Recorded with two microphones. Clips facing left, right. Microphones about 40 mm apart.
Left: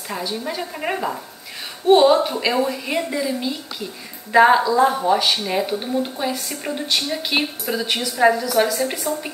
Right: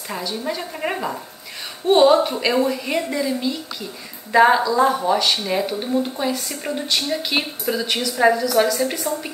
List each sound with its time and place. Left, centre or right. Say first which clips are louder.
0.1 s a woman's voice: even; centre